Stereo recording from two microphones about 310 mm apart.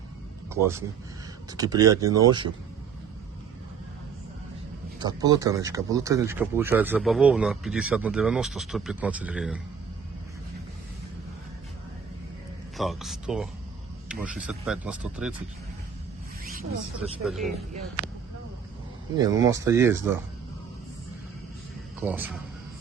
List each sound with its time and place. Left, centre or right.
0.5 s speech: centre
4.9 s speech: centre
12.7 s speech: centre
16.4 s zipper: right
17.2 s speech: centre
18.0 s speech: left
19.1 s speech: centre
22.0 s speech: centre